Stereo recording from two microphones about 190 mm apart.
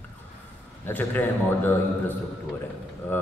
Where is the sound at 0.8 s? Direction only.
10° left (ahead or behind).